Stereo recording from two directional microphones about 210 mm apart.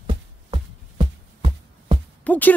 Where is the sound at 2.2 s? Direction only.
5° left (ahead or behind).